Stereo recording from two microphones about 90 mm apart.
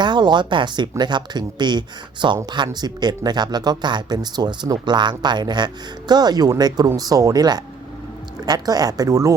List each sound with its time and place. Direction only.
0.0 s speech: 55° right (ahead or behind); by 9.3 s 35° right (ahead or behind)